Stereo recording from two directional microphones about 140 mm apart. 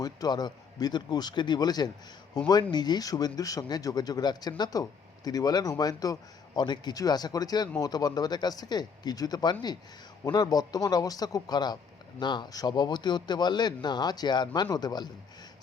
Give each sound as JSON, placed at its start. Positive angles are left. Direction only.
{"t": 0.0, "sound": "speech", "side_deg": 30}